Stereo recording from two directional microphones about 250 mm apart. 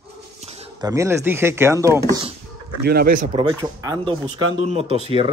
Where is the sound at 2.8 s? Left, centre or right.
Right.